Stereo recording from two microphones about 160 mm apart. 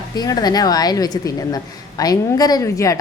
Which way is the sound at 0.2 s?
25° left (ahead or behind).